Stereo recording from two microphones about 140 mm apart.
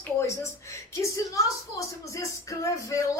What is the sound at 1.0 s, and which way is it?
A woman's voice, 20° left (ahead or behind).